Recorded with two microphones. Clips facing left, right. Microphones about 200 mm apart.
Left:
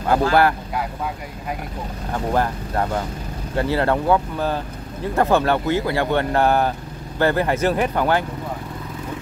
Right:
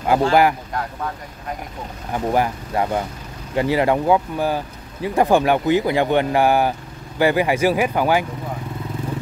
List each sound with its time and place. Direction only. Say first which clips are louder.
0.3 s speech: right 2 dB; 15° right (ahead or behind)
2.3 s speech: right 1 dB; 10° right (ahead or behind)